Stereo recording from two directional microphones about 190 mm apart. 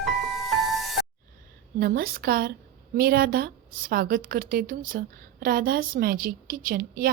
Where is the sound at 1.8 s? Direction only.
50° right (ahead or behind).